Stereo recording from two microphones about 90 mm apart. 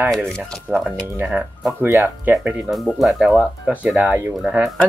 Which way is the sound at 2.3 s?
20° right (ahead or behind).